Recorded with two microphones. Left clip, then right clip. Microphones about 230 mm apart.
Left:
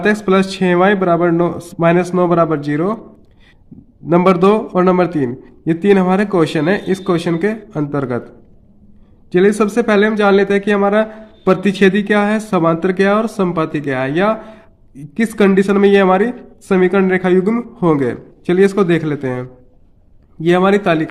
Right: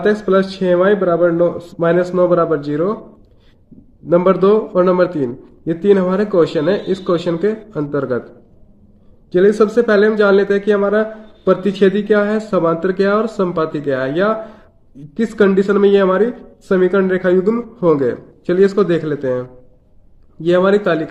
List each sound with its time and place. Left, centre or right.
0.0 s speech: left
4.0 s speech: left
9.3 s speech: left